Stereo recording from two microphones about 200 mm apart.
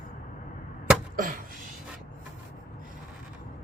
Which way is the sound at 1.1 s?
45° right (ahead or behind).